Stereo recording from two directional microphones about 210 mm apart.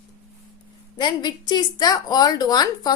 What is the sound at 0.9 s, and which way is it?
A woman's voice, 20° left (ahead or behind).